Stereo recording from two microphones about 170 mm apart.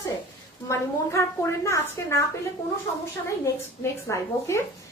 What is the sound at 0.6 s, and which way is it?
A woman's voice, 15° left (ahead or behind).